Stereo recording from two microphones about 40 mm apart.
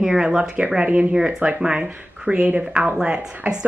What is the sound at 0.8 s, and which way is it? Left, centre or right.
A woman's voice, right.